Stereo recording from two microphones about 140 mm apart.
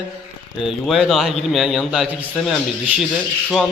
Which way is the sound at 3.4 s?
5° left (ahead or behind).